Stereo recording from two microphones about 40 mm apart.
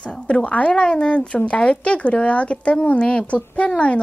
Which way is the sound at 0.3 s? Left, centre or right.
Left.